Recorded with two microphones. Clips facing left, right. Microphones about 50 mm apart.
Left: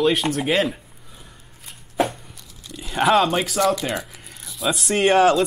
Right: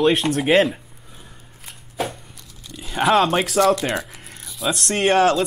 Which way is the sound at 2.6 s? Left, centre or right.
Centre.